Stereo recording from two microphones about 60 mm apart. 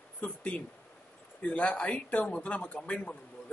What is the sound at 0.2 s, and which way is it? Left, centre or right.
A man's voice, centre.